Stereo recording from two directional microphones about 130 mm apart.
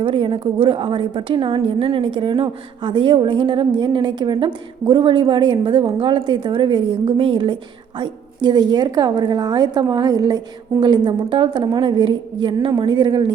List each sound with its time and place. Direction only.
0.0 s a woman's voice: 40° right (ahead or behind)